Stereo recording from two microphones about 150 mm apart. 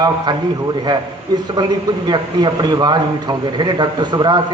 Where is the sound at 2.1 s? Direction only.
25° right (ahead or behind).